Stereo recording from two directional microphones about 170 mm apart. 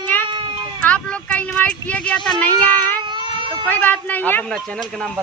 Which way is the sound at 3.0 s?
25° right (ahead or behind).